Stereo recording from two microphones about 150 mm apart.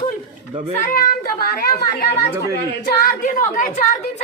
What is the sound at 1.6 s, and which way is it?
Speech, 90° left.